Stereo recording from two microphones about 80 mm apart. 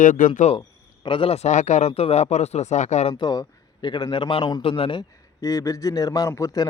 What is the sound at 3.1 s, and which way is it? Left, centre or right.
Speech, left.